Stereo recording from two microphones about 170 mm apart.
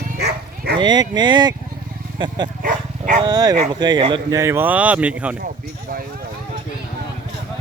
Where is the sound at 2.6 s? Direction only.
50° right (ahead or behind).